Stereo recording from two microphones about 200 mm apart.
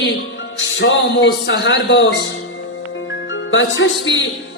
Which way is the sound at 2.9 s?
70° left (ahead or behind).